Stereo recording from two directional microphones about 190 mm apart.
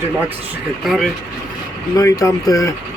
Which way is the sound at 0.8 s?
Centre (ahead or behind).